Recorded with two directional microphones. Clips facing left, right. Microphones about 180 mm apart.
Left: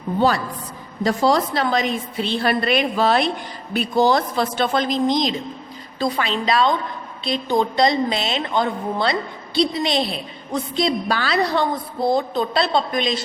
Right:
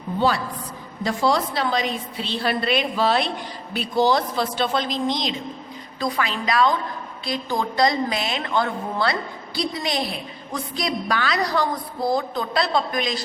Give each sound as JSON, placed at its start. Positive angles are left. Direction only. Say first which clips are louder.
{"t": 0.2, "sound": "a woman's voice", "louder": "left 2 dB", "side_deg": 45}
{"t": 6.0, "sound": "a woman's voice", "louder": "left 3 dB", "side_deg": 25}